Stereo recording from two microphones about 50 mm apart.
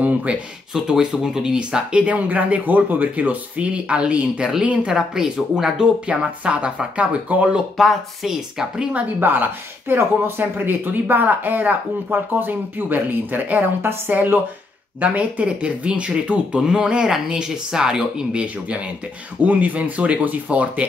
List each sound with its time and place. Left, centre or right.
0.0 s a sound: right
0.7 s speech: centre; by 7.4 s right
7.7 s speech: centre
9.2 s speech: right
15.0 s speech: right
19.4 s speech: right